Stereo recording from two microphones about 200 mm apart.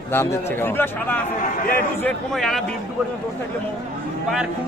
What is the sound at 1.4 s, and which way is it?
Speech, 40° left (ahead or behind).